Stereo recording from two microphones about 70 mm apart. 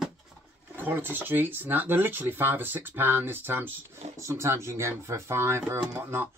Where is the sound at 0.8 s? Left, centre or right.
Right.